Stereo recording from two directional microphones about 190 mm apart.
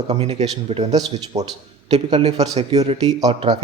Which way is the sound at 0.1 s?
35° right (ahead or behind).